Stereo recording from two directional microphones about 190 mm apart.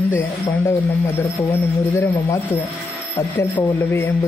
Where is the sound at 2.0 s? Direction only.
15° left (ahead or behind).